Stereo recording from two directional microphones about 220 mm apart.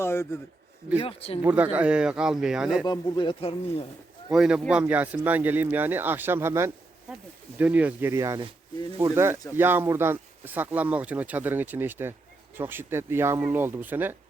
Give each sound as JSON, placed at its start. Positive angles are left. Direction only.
{"t": 0.0, "sound": "a man's voice", "side_deg": 10}
{"t": 1.0, "sound": "speech", "side_deg": 25}
{"t": 1.5, "sound": "speech", "side_deg": -5}
{"t": 2.8, "sound": "speech", "side_deg": 20}
{"t": 4.3, "sound": "speech", "side_deg": -5}